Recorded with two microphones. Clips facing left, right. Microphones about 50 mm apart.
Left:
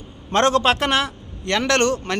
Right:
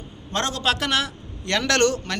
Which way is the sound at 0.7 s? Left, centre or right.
Left.